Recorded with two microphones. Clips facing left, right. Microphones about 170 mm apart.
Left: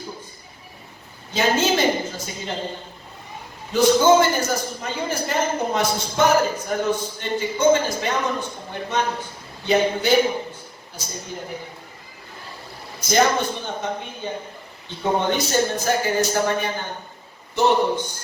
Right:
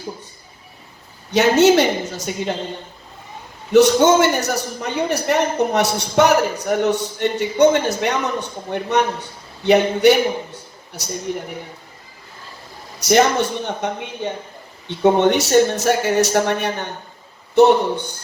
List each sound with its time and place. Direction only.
1.3 s a man's voice: 75° right (ahead or behind)
3.7 s a man's voice: 75° right (ahead or behind)
13.0 s a man's voice: 75° right (ahead or behind)